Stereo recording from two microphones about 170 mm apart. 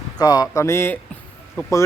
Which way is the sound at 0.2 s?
25° left (ahead or behind).